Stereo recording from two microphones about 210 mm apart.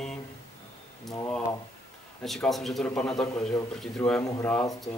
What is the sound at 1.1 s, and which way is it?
Speech, 15° left (ahead or behind).